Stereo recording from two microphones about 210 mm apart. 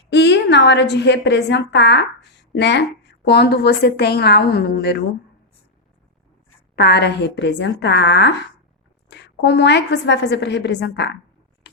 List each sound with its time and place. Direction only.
0.1 s a woman's voice: 55° left (ahead or behind)
6.7 s a woman's voice: 50° left (ahead or behind)